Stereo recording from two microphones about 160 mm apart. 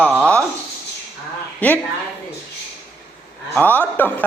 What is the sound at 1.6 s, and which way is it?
Speech, 10° left (ahead or behind).